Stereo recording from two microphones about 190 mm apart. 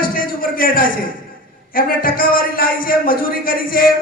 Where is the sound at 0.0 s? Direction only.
50° left (ahead or behind).